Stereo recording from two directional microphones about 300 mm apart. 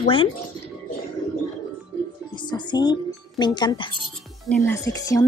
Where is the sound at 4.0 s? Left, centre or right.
Centre.